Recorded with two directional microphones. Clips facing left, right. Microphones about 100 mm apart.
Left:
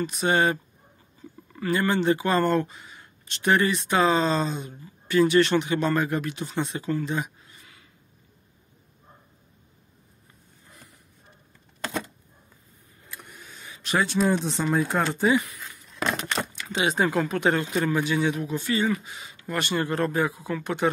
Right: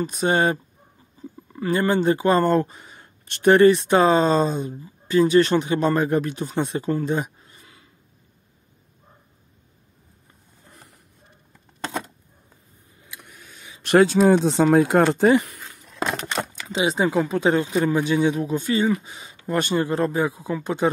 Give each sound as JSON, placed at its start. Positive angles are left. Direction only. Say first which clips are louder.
{"t": 0.0, "sound": "speech", "louder": "right 2 dB", "side_deg": -40}
{"t": 1.5, "sound": "speech", "louder": "right 3 dB", "side_deg": -20}
{"t": 1.9, "sound": "speech", "louder": "right 5 dB", "side_deg": -35}
{"t": 4.6, "sound": "speech", "louder": "right 5 dB", "side_deg": -30}
{"t": 13.8, "sound": "speech", "louder": "right 8 dB", "side_deg": -70}
{"t": 15.2, "sound": "a sound", "louder": "right 5 dB", "side_deg": -60}
{"t": 16.3, "sound": "a sound", "louder": "right 2 dB", "side_deg": -20}
{"t": 17.3, "sound": "speech", "louder": "right 4 dB", "side_deg": -20}
{"t": 18.3, "sound": "speech", "louder": "right 4 dB", "side_deg": -35}
{"t": 19.2, "sound": "a sound", "louder": "right 7 dB", "side_deg": -30}
{"t": 19.8, "sound": "speech", "louder": "right 3 dB", "side_deg": -20}